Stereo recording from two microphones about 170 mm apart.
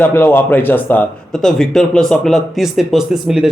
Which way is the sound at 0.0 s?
10° left (ahead or behind).